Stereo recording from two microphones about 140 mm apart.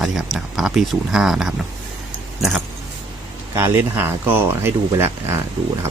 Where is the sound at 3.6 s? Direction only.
15° right (ahead or behind).